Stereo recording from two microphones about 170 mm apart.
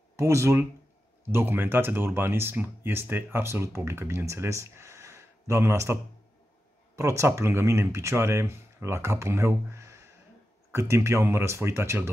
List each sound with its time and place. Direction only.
0.1 s speech: 15° right (ahead or behind)
7.0 s speech: 15° right (ahead or behind)